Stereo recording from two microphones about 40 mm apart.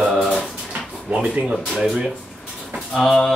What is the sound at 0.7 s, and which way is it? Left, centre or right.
Drawer open or close, right.